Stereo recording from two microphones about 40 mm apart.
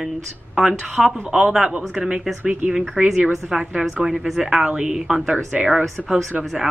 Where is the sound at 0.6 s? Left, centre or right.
Right.